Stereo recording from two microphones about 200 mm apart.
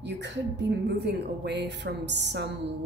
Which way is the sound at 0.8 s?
55° right (ahead or behind).